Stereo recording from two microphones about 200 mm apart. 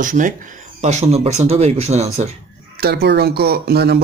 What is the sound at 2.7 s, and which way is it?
Speech, 50° right (ahead or behind).